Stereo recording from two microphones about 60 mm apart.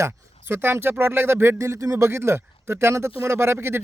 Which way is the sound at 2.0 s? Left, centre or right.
Right.